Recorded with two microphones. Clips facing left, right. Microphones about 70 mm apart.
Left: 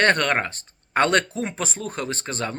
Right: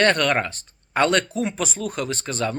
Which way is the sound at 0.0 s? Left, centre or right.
Left.